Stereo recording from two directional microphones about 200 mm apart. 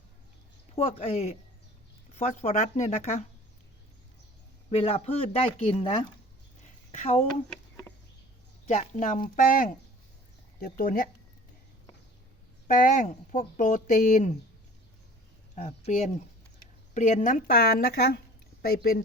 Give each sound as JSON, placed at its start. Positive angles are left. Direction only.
{"t": 0.8, "sound": "speech", "side_deg": 30}
{"t": 4.7, "sound": "speech", "side_deg": 30}
{"t": 7.5, "sound": "a sound", "side_deg": 10}
{"t": 8.6, "sound": "speech", "side_deg": 35}
{"t": 12.6, "sound": "speech", "side_deg": 40}
{"t": 15.5, "sound": "speech", "side_deg": 35}